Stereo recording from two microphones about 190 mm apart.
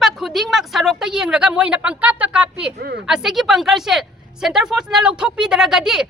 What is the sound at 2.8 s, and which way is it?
Speech, 60° right (ahead or behind).